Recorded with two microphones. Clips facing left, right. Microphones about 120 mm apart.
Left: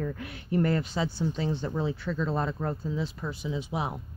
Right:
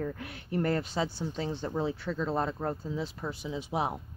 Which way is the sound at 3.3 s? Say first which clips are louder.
Left 2 dB; 40° right (ahead or behind).